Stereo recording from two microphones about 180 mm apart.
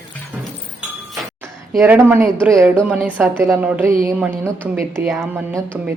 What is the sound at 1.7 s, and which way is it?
A woman's voice, 10° right (ahead or behind).